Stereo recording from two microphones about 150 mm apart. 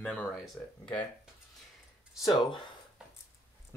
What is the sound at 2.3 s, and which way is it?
Speech, 30° left (ahead or behind).